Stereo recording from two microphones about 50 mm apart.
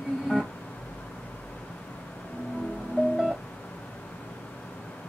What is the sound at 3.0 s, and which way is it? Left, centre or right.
Music, left.